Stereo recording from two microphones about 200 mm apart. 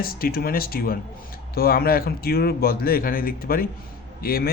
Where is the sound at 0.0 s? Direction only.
45° left (ahead or behind).